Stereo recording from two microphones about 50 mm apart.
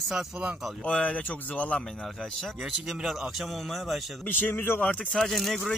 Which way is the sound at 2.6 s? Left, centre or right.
Centre.